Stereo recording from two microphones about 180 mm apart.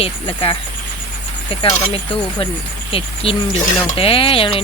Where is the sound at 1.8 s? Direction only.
30° left (ahead or behind).